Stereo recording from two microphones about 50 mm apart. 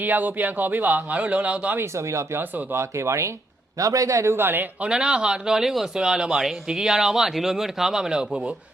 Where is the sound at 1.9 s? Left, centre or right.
Right.